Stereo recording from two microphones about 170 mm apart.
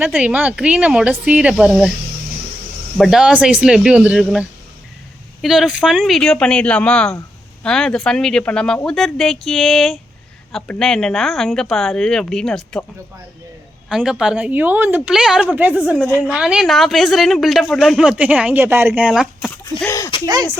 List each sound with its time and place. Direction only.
0.0 s speech: 5° right (ahead or behind)
3.0 s a woman's voice: 5° right (ahead or behind)
13.9 s a woman's voice: 5° right (ahead or behind)
19.7 s speech: 25° right (ahead or behind)